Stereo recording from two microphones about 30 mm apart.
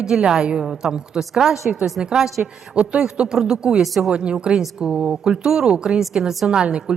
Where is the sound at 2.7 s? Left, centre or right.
Right.